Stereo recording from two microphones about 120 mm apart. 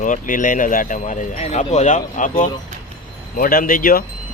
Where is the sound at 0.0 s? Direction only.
90° left.